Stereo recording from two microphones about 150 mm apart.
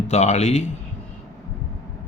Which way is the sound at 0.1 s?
50° left (ahead or behind).